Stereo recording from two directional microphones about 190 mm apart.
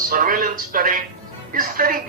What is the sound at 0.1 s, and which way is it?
A woman's voice, 50° right (ahead or behind).